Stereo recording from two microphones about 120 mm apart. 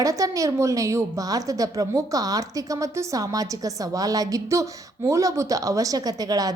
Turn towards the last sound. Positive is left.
turn(degrees=-30)  # may be behind; listen again after turning